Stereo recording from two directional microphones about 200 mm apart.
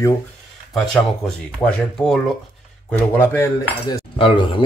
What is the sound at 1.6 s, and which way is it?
Speech, 5° left (ahead or behind).